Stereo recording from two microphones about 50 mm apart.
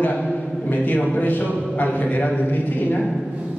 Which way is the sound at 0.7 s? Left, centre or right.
Left.